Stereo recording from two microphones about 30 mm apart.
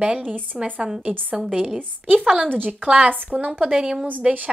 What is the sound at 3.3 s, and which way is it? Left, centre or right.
Speech, right.